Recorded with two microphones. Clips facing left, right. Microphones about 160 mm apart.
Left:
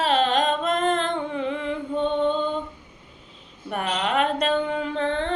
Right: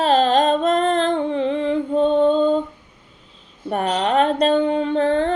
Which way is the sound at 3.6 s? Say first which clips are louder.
Right 6 dB; 35° right (ahead or behind).